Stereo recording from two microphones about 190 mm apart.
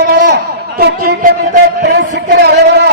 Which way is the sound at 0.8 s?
50° right (ahead or behind).